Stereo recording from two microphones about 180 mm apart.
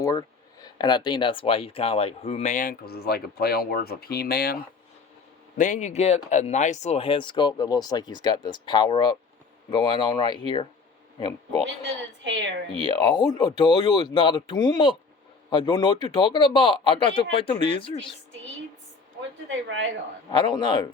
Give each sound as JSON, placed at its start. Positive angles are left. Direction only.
{"t": 0.0, "sound": "speech", "side_deg": 20}
{"t": 5.5, "sound": "speech", "side_deg": 45}
{"t": 12.2, "sound": "a woman's voice", "side_deg": -85}
{"t": 12.8, "sound": "speech", "side_deg": 25}
{"t": 19.5, "sound": "a woman's voice", "side_deg": -90}
{"t": 20.3, "sound": "speech", "side_deg": 25}